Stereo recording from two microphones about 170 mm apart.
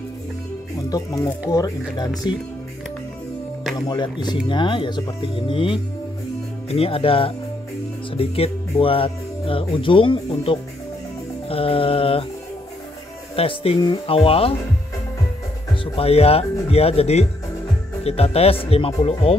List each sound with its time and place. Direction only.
0.8 s speech: 20° left (ahead or behind)
3.7 s speech: 25° left (ahead or behind)
13.4 s speech: 35° left (ahead or behind)
15.7 s speech: 35° left (ahead or behind)